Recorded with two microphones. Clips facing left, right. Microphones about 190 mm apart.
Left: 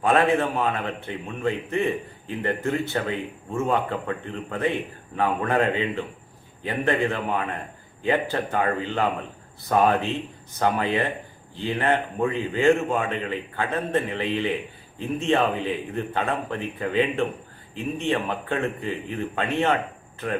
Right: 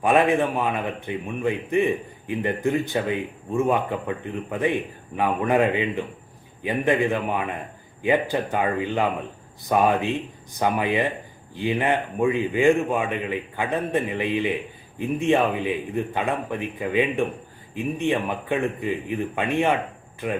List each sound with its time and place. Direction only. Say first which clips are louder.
0.0 s a man's voice: right 1 dB; 15° right (ahead or behind)